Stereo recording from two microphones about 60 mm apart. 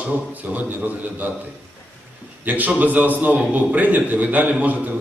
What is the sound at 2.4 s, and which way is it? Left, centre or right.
A man's voice, right.